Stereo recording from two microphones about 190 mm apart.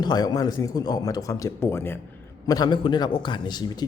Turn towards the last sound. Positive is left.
turn(degrees=20)  # may be behind; listen again after turning